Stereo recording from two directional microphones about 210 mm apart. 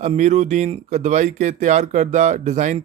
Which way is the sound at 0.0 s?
35° right (ahead or behind).